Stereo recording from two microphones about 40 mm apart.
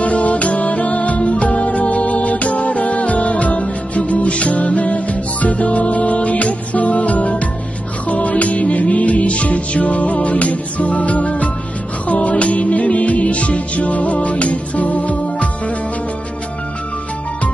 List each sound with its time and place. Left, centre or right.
0.0 s music: left